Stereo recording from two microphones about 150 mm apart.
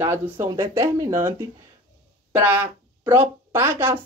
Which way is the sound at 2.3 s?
10° right (ahead or behind).